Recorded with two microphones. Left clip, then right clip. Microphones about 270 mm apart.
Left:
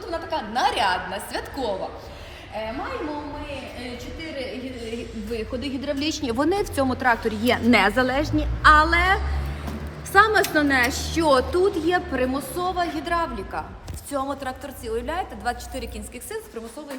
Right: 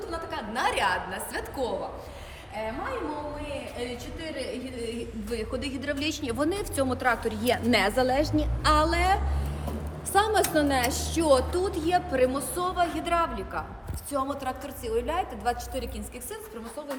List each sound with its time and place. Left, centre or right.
0.1 s a woman's voice: centre
5.3 s a woman's voice: centre